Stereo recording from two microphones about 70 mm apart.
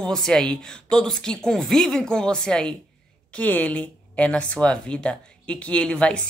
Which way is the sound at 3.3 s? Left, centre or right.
Left.